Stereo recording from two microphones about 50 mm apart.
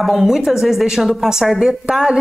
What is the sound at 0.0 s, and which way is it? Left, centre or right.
A woman's voice, centre.